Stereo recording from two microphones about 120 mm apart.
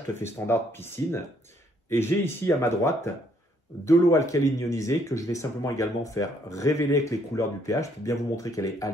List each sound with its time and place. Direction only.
0.1 s speech: 20° left (ahead or behind)